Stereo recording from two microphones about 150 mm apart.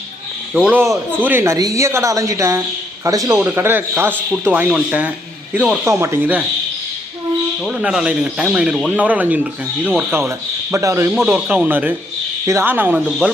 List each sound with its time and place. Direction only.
0.5 s a woman's voice: 10° right (ahead or behind)
5.8 s a woman's voice: 15° right (ahead or behind)
7.6 s a woman's voice: 5° right (ahead or behind)
11.1 s a woman's voice: 5° right (ahead or behind)
13.1 s speech: centre (ahead or behind)